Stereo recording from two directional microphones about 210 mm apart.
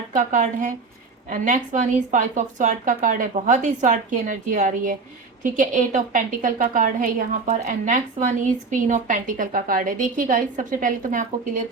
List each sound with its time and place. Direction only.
0.1 s a woman's voice: 35° right (ahead or behind)